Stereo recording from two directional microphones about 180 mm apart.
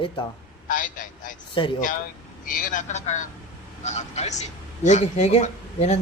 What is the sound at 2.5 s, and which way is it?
A man's voice, 50° left (ahead or behind).